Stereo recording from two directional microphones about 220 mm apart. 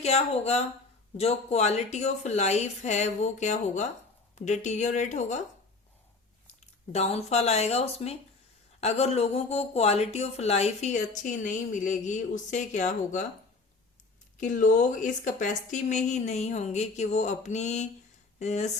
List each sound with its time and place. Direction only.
0.0 s speech: 30° left (ahead or behind)
6.5 s speech: 30° left (ahead or behind)
14.3 s speech: 35° left (ahead or behind)